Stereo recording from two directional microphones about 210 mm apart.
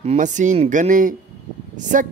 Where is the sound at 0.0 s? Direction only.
30° right (ahead or behind).